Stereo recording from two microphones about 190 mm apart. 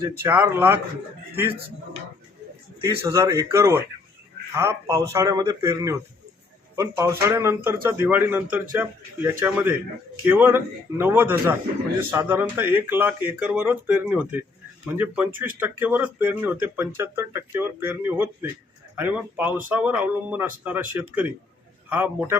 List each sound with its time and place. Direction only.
0.0 s speech: 10° right (ahead or behind)
2.8 s speech: 15° right (ahead or behind)